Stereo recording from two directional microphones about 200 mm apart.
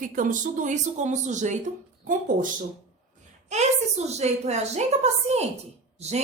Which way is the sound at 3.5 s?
35° right (ahead or behind).